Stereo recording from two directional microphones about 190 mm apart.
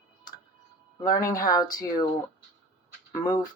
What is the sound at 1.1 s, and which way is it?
Speech, 20° left (ahead or behind).